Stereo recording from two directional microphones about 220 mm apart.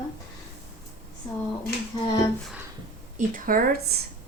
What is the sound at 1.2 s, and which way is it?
Speech, 10° left (ahead or behind).